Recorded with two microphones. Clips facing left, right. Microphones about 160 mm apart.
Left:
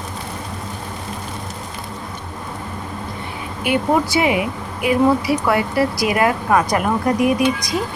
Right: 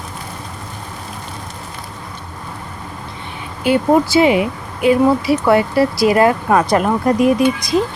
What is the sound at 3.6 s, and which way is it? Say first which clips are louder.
Speech: right 5 dB; 30° right (ahead or behind).